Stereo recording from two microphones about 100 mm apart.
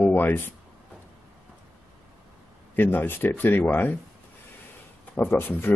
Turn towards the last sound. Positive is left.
turn(degrees=20)  # may be behind; listen again after turning